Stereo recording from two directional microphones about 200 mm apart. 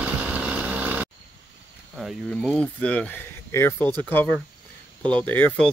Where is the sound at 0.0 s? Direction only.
5° right (ahead or behind).